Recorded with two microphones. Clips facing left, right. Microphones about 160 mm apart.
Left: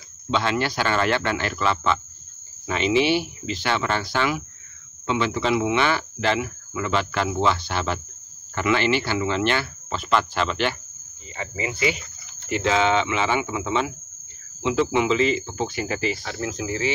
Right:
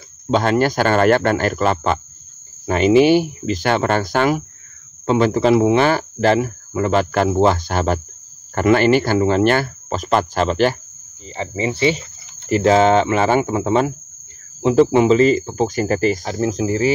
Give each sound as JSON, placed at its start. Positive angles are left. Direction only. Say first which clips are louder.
{"t": 0.3, "sound": "speech", "louder": "right 7 dB", "side_deg": -45}
{"t": 11.3, "sound": "speech", "louder": "right 7 dB", "side_deg": -30}